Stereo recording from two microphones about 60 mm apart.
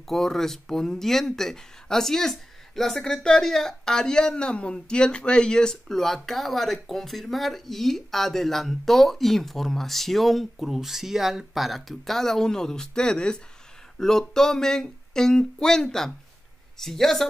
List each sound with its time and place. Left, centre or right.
0.0 s speech: centre
13.9 s a sound: centre
16.7 s speech: centre